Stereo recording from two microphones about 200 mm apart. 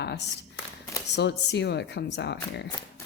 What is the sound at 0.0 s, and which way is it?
A woman's voice, 60° left (ahead or behind).